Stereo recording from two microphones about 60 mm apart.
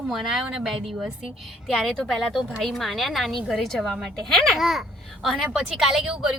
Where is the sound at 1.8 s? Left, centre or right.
Centre.